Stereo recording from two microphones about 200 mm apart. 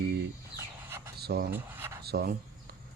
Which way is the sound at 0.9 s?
10° right (ahead or behind).